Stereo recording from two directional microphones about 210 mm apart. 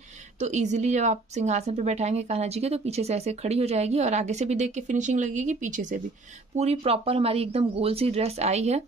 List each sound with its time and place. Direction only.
0.4 s a woman's voice: 35° right (ahead or behind)